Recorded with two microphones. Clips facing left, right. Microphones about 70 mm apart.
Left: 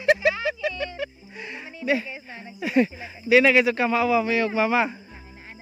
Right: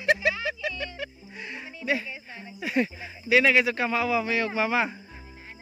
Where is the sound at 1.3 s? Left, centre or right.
Left.